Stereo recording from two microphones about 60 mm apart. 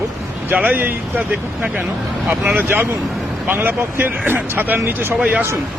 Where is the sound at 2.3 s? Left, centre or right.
Right.